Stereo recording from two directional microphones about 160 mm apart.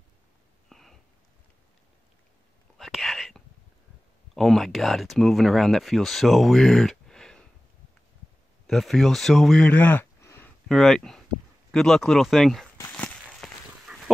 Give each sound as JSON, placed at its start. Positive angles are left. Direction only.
{"t": 0.7, "sound": "a sound", "side_deg": 0}
{"t": 2.8, "sound": "whispering", "side_deg": 0}
{"t": 4.4, "sound": "speech", "side_deg": 0}
{"t": 8.6, "sound": "speech", "side_deg": 0}
{"t": 10.7, "sound": "speech", "side_deg": 0}
{"t": 13.3, "sound": "goat", "side_deg": 0}